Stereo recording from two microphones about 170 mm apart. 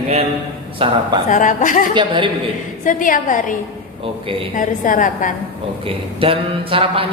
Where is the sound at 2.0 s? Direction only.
30° right (ahead or behind).